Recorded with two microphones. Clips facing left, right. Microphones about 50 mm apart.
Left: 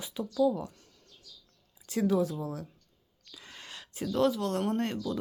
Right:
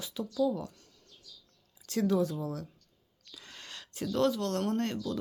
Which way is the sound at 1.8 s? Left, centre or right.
Centre.